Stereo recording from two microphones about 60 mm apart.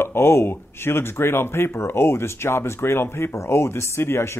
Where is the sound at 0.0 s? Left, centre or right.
Left.